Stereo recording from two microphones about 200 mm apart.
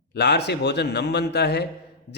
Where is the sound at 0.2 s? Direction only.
55° left (ahead or behind).